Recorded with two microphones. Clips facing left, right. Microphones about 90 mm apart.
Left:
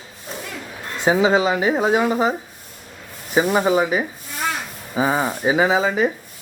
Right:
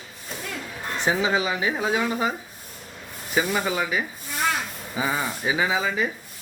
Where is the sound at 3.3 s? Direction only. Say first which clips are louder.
Left 7 dB; 35° left (ahead or behind).